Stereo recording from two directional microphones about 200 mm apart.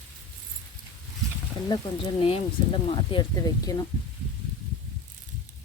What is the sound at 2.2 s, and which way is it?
Speech, 30° left (ahead or behind).